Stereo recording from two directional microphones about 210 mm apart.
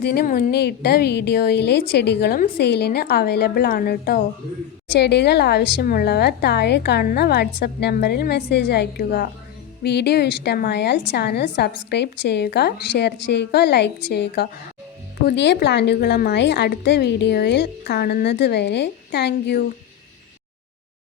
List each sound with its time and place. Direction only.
0.0 s a woman's voice: 50° left (ahead or behind)